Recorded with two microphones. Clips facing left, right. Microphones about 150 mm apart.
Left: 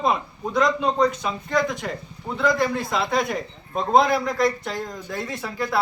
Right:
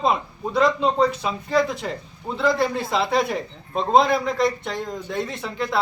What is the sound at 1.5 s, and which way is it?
Speech, 30° right (ahead or behind).